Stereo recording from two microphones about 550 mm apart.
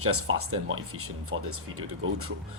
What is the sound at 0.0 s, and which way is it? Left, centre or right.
Speech, right.